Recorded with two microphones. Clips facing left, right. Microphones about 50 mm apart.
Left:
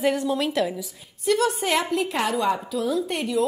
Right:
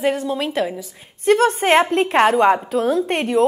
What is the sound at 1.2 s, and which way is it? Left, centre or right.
A woman's voice, right.